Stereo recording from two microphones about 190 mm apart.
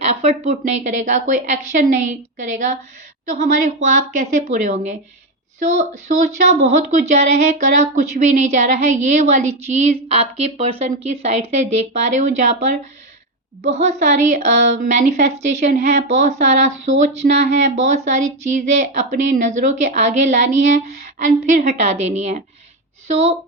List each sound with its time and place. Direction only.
0.0 s speech: 35° right (ahead or behind)
4.4 s speech: 40° right (ahead or behind)